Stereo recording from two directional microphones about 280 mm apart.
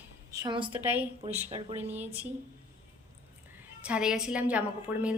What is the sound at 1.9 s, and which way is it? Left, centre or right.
Speech, centre.